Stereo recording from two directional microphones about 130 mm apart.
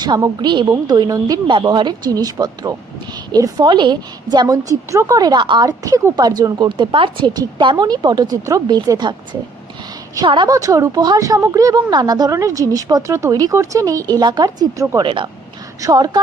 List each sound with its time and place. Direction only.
0.4 s a woman's voice: 35° right (ahead or behind)
15.8 s a woman's voice: 30° right (ahead or behind)